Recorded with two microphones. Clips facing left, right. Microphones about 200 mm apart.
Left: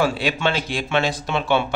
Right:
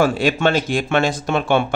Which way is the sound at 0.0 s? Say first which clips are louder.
Right 4 dB; 50° right (ahead or behind).